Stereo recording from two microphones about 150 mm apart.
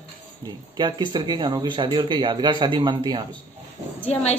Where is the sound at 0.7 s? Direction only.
30° right (ahead or behind).